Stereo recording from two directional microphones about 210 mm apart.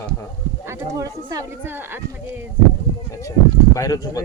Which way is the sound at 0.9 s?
15° right (ahead or behind).